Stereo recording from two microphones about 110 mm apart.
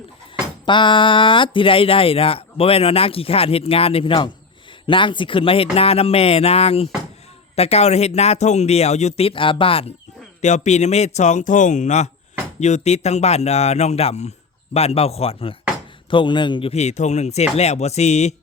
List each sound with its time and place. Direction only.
0.6 s speech: 45° left (ahead or behind)
4.9 s speech: 50° left (ahead or behind)
10.4 s speech: 90° left; by 15.5 s 60° left (ahead or behind)
16.0 s speech: 45° left (ahead or behind)
16.7 s speech: 90° left